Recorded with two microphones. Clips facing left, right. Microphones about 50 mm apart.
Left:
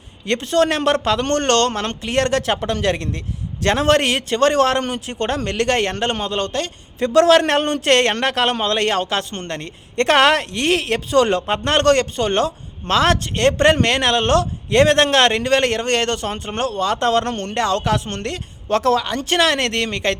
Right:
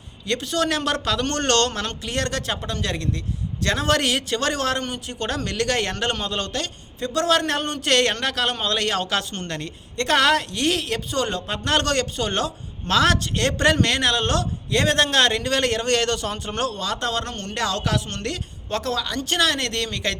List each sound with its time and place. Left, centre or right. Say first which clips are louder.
0.3 s a man's voice: left 6 dB; left
5.3 s a man's voice: left 4 dB; left
7.0 s a man's voice: left 8 dB; left
7.9 s a man's voice: left 3 dB; left
9.0 s a man's voice: left 3 dB; left
10.0 s a man's voice: left 5 dB; left
11.4 s a man's voice: left 7 dB; left
18.7 s a man's voice: left 9 dB; left
18.9 s a man's voice: left 5 dB; left